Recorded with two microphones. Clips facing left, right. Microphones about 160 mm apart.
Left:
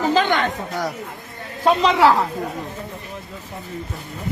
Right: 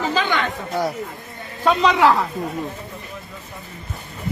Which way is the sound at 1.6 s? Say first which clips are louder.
Left 1 dB; 30° left (ahead or behind).